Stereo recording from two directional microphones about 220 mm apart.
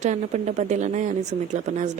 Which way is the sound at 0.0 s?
30° right (ahead or behind).